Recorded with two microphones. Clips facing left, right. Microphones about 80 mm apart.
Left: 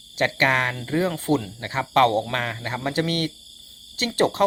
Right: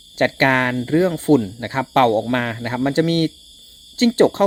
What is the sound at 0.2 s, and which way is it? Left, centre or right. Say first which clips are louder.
Speech: right 5 dB; right.